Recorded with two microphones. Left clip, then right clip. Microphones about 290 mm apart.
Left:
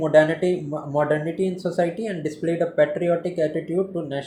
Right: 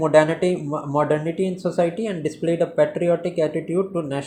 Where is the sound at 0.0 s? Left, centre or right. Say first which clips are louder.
Right 1 dB; centre.